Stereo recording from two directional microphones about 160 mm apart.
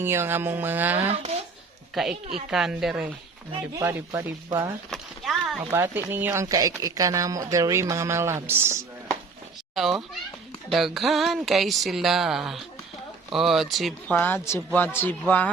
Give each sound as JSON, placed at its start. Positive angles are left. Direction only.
{"t": 0.0, "sound": "speech", "side_deg": -15}
{"t": 2.0, "sound": "speech", "side_deg": 0}
{"t": 3.8, "sound": "speech", "side_deg": -20}
{"t": 4.9, "sound": "a sound", "side_deg": 0}
{"t": 5.7, "sound": "speech", "side_deg": -15}
{"t": 9.7, "sound": "speech", "side_deg": 0}
{"t": 14.1, "sound": "speech", "side_deg": 10}